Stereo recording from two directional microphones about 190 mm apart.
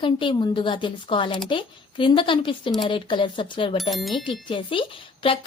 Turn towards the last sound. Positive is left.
turn(degrees=25)  # may be behind; listen again after turning